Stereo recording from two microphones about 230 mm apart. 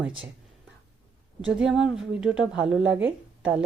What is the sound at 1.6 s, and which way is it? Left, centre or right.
A woman's voice, centre.